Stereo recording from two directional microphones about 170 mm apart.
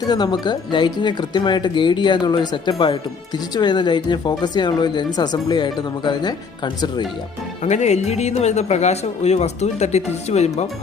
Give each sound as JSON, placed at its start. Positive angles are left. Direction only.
{"t": 0.0, "sound": "speech", "side_deg": 25}
{"t": 7.6, "sound": "speech", "side_deg": 40}